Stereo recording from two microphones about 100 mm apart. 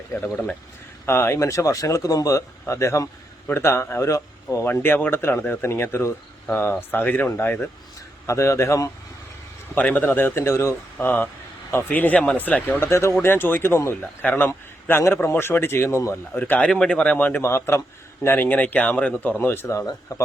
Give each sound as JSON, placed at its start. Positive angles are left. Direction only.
{"t": 1.0, "sound": "speech", "side_deg": 25}
{"t": 8.3, "sound": "speech", "side_deg": 30}
{"t": 9.7, "sound": "a man's voice", "side_deg": 15}
{"t": 16.3, "sound": "a man's voice", "side_deg": 15}
{"t": 17.4, "sound": "a man's voice", "side_deg": 25}
{"t": 19.6, "sound": "speech", "side_deg": 30}